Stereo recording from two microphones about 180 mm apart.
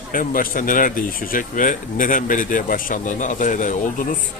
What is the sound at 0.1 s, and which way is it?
Speech, 50° left (ahead or behind).